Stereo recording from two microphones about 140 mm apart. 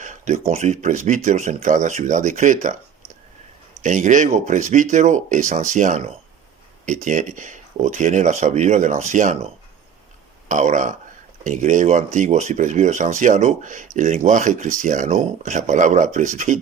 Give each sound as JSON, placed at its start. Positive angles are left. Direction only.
{"t": 0.0, "sound": "a sound", "side_deg": -65}
{"t": 0.5, "sound": "speech", "side_deg": -60}
{"t": 3.8, "sound": "speech", "side_deg": -60}
{"t": 10.5, "sound": "speech", "side_deg": -60}